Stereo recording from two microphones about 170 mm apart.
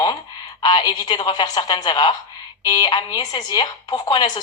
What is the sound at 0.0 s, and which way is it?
A woman's voice, 25° left (ahead or behind).